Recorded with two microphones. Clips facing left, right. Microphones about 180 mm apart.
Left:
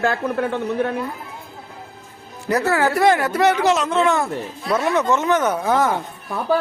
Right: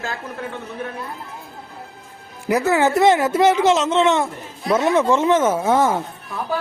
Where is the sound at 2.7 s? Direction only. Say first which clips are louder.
Right 2 dB; 20° right (ahead or behind).